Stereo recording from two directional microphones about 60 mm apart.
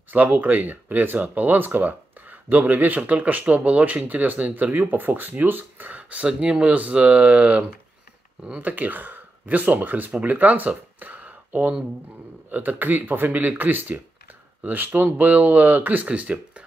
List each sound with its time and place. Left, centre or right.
0.1 s speech: right